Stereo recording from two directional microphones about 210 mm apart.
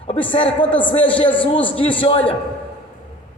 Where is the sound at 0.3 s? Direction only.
20° left (ahead or behind).